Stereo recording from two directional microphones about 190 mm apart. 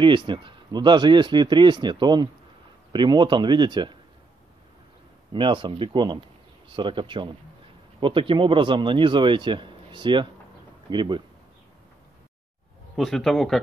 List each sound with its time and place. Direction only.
0.0 s speech: 25° right (ahead or behind)
5.3 s speech: 25° right (ahead or behind)
12.9 s speech: centre (ahead or behind)